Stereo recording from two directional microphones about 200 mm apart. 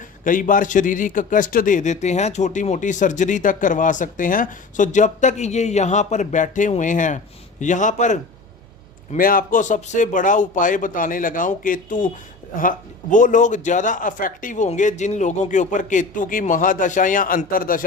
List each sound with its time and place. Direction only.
0.3 s a man's voice: 40° left (ahead or behind)